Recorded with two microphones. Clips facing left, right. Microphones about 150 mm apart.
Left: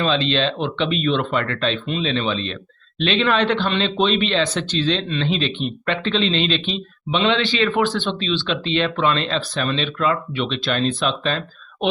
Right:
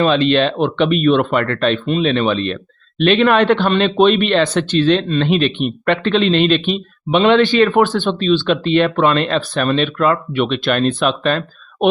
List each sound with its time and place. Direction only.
0.3 s a man's voice: 55° right (ahead or behind)